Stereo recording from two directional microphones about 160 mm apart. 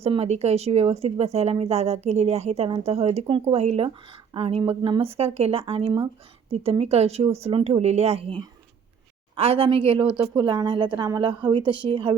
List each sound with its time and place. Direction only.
0.0 s speech: 40° right (ahead or behind)
9.3 s speech: 35° right (ahead or behind)